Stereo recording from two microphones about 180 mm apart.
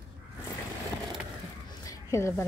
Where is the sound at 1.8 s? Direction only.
20° left (ahead or behind).